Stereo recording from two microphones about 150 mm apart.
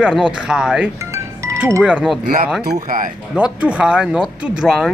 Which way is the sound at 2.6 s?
75° right (ahead or behind).